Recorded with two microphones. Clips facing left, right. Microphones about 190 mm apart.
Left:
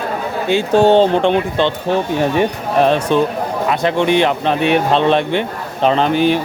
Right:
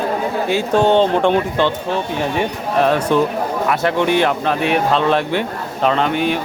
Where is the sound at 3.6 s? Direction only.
20° left (ahead or behind).